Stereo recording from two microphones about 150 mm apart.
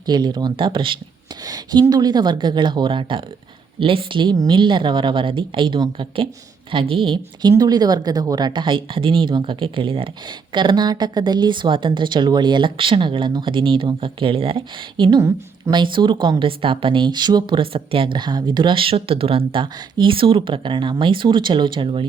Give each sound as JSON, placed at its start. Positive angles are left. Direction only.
{"t": 0.0, "sound": "a woman's voice", "side_deg": -30}
{"t": 15.2, "sound": "a woman's voice", "side_deg": -20}
{"t": 15.7, "sound": "speech", "side_deg": -30}